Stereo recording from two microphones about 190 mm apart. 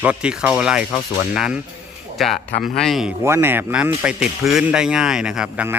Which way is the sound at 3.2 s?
10° right (ahead or behind).